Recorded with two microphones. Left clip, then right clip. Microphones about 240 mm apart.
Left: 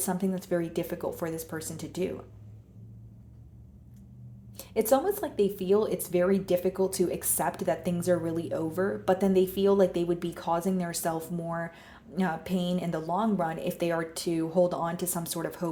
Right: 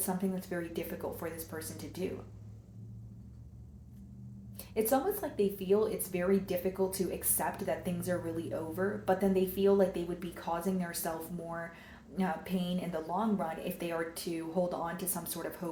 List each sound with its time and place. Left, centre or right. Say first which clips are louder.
0.0 s speech: left 5 dB; left
4.5 s speech: left 6 dB; left